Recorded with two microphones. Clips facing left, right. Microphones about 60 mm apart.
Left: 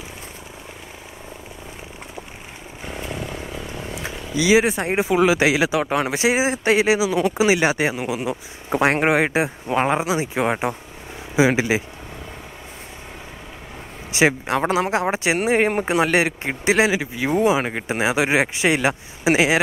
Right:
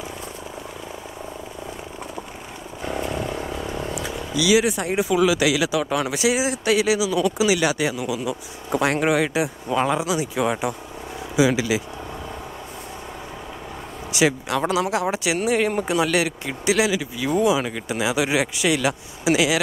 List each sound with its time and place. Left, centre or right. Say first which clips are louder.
2.9 s vehicle: right 4 dB; right
3.9 s speech: right 1 dB; left
14.1 s speech: left 2 dB; left